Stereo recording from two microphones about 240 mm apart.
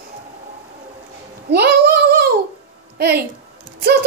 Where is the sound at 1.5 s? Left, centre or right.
Right.